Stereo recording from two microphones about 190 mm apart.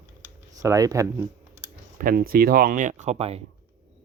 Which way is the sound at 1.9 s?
50° right (ahead or behind).